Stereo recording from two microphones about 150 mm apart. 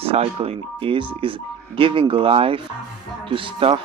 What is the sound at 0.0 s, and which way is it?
Speech, 40° right (ahead or behind).